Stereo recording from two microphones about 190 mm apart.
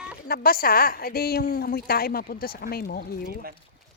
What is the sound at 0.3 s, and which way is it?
A woman's voice, 50° left (ahead or behind).